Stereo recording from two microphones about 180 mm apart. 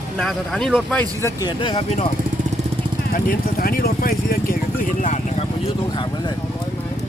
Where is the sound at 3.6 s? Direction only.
55° left (ahead or behind).